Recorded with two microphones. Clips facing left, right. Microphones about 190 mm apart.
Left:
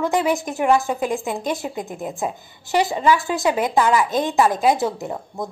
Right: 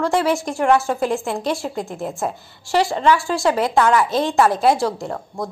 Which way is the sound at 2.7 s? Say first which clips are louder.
Right 1 dB; 20° left (ahead or behind).